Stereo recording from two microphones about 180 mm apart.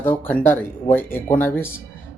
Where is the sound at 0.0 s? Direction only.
10° left (ahead or behind).